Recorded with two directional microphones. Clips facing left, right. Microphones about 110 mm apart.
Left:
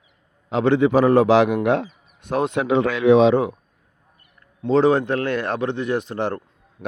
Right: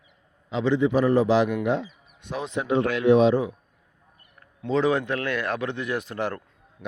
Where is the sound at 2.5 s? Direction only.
90° left; by 3.6 s 70° left (ahead or behind).